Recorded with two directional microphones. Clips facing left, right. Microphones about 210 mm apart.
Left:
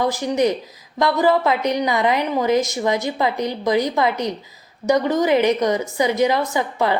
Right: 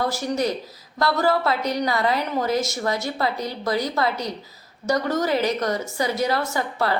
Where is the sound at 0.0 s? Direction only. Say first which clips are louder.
Left 5 dB; 15° left (ahead or behind).